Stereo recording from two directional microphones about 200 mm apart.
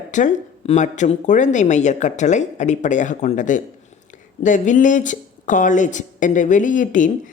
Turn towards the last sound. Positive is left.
turn(degrees=40)  # may be behind; listen again after turning